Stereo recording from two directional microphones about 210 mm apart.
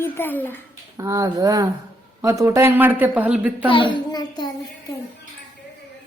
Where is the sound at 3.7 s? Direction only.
25° left (ahead or behind).